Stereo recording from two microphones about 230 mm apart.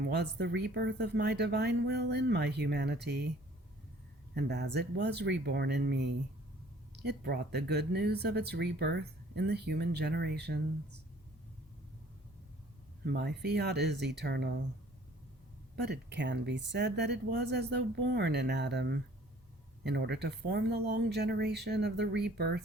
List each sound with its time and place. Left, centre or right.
0.1 s speech: right
4.4 s speech: right
13.1 s speech: right
15.7 s speech: right